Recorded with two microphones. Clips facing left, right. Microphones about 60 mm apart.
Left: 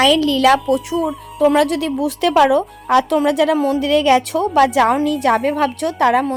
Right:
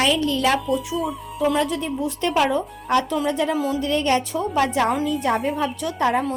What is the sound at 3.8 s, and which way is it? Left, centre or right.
A woman's voice, left.